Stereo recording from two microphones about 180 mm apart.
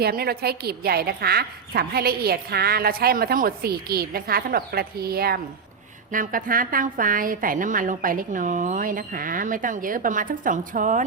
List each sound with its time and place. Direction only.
0.0 s a woman's voice: 60° right (ahead or behind)